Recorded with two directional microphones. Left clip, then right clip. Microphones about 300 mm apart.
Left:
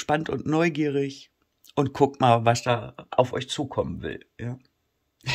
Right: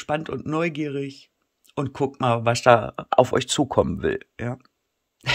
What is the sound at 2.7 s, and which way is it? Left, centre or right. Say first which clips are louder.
Speech: right 6 dB; centre.